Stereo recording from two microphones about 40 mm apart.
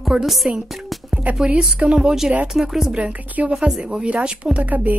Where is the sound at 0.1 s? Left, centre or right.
Centre.